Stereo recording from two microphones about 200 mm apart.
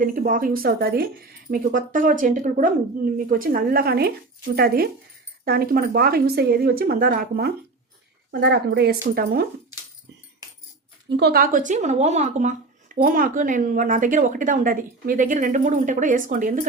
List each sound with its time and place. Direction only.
0.0 s speech: 45° right (ahead or behind)
8.3 s speech: 60° right (ahead or behind)
11.2 s speech: 50° right (ahead or behind)